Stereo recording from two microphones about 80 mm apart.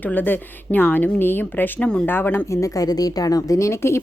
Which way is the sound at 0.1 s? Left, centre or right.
Left.